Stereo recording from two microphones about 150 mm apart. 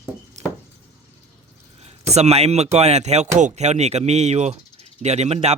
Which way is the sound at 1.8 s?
45° right (ahead or behind).